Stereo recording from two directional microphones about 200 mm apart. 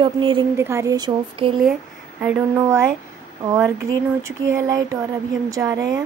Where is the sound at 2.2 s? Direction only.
10° right (ahead or behind).